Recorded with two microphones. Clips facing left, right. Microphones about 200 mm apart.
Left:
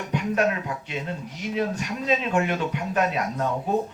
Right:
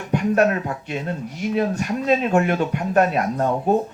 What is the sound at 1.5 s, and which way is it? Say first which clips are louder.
Speech: right 5 dB; 50° right (ahead or behind).